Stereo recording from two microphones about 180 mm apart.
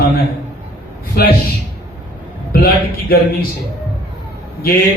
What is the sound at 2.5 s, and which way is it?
Speech, 55° left (ahead or behind).